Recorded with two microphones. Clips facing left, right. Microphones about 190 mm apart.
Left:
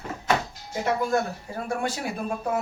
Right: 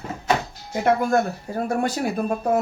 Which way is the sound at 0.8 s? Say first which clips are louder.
Right 5 dB; 50° right (ahead or behind).